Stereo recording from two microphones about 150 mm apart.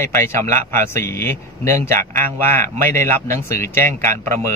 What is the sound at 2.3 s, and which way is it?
A man's voice, 15° left (ahead or behind).